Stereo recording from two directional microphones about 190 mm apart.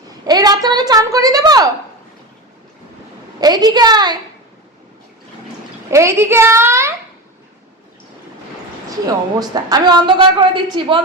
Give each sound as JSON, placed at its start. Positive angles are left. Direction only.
{"t": 0.3, "sound": "a woman's voice", "side_deg": -20}
{"t": 3.4, "sound": "a woman's voice", "side_deg": -20}
{"t": 5.9, "sound": "a child's voice", "side_deg": -15}
{"t": 8.9, "sound": "a woman's voice", "side_deg": -20}